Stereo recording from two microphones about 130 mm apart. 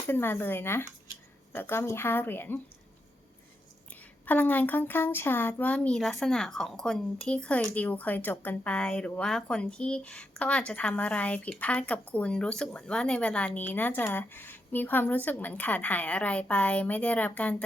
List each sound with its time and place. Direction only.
0.1 s speech: 15° left (ahead or behind)
4.3 s speech: 15° left (ahead or behind)